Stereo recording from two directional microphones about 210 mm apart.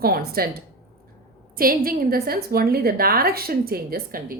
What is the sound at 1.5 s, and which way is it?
A woman's voice, 45° right (ahead or behind).